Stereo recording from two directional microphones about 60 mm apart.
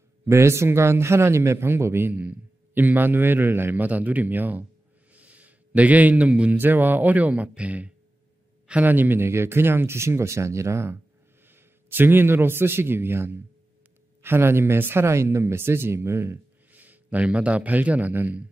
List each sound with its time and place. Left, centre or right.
0.2 s speech: right
2.1 s a man's voice: right
5.1 s a sound: right
6.5 s a man's voice: right
11.4 s a man's voice: right
16.7 s a man's voice: right